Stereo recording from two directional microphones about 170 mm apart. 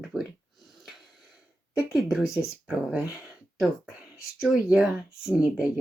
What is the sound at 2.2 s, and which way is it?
Speech, 15° left (ahead or behind).